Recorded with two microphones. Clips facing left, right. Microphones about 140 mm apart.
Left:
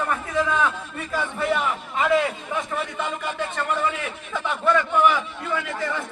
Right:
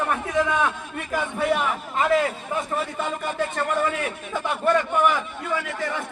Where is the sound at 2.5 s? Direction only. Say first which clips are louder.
Right 1 dB; 35° right (ahead or behind).